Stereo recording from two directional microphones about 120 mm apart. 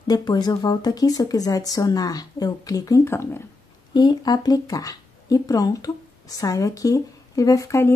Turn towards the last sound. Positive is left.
turn(degrees=25)  # may be behind; listen again after turning